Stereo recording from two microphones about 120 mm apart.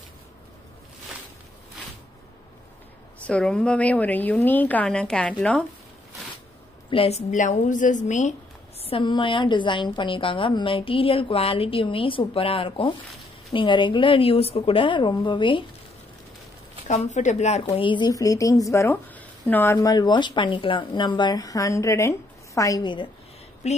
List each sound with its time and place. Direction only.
3.3 s a woman's voice: 10° left (ahead or behind)
6.9 s a woman's voice: 55° left (ahead or behind); by 8.4 s 85° left
8.8 s a woman's voice: 45° left (ahead or behind)
16.8 s speech: 85° left; by 17.7 s 70° left (ahead or behind)
17.7 s a woman's voice: 40° left (ahead or behind)
18.1 s speech: 30° left (ahead or behind)
19.1 s a sound: 15° left (ahead or behind)
19.8 s speech: 35° left (ahead or behind)
23.6 s speech: 65° left (ahead or behind)